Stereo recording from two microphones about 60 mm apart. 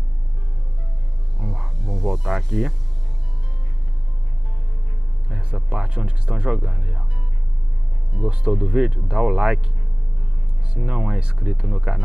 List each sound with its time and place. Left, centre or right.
1.4 s music: centre
5.7 s speech: centre
8.5 s speech: centre
10.8 s speech: centre